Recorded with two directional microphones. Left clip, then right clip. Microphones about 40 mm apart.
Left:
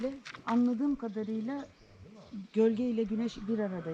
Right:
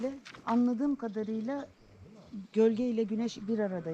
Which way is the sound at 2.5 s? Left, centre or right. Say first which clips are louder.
Right 1 dB; right.